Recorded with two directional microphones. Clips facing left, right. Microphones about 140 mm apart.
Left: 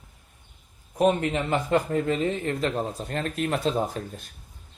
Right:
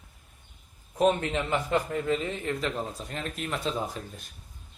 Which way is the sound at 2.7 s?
30° left (ahead or behind).